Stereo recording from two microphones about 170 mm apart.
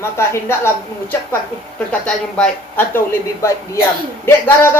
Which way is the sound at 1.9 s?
5° left (ahead or behind).